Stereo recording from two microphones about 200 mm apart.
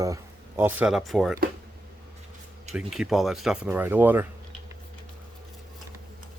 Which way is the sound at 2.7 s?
5° right (ahead or behind).